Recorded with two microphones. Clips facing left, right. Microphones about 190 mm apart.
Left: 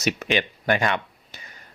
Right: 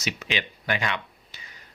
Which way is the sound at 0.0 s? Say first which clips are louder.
Left 7 dB; 55° left (ahead or behind).